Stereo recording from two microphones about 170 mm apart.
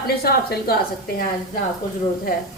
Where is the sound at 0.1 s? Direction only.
65° left (ahead or behind).